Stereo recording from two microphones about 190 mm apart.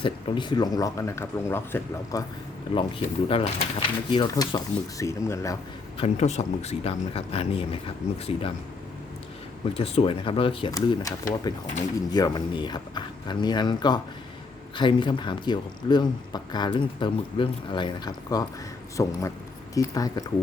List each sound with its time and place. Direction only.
0.0 s speech: 25° left (ahead or behind)
2.7 s speech: 25° left (ahead or behind)
6.0 s speech: 35° left (ahead or behind)
9.6 s speech: 30° left (ahead or behind)
12.1 s speech: 20° left (ahead or behind)